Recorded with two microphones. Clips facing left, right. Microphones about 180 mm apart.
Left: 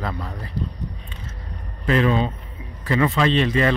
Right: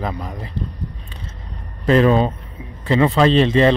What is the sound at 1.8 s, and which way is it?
Speech, 35° right (ahead or behind).